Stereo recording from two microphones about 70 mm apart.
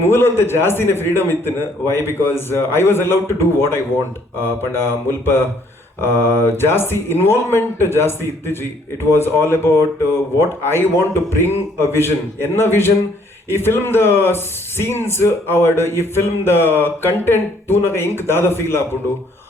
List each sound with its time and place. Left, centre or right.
0.0 s a man's voice: left